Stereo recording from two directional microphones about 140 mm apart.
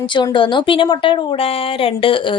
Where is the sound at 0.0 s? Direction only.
35° left (ahead or behind).